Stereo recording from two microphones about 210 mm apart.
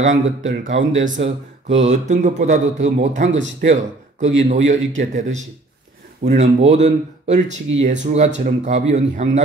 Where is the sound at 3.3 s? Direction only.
60° right (ahead or behind).